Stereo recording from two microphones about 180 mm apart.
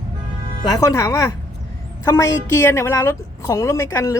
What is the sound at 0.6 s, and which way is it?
A woman's voice, 20° left (ahead or behind).